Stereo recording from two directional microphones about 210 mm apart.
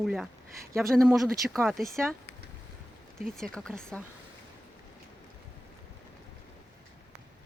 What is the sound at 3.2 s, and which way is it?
Speech, 5° left (ahead or behind).